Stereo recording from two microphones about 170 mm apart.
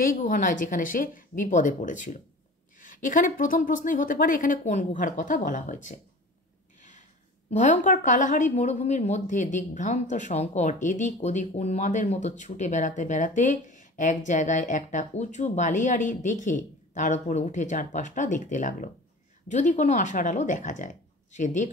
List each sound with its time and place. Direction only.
0.0 s a woman's voice: 50° left (ahead or behind)
6.8 s a sound: 45° left (ahead or behind)
7.5 s a woman's voice: 45° left (ahead or behind)